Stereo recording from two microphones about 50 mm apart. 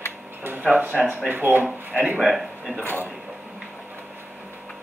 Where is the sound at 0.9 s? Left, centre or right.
Centre.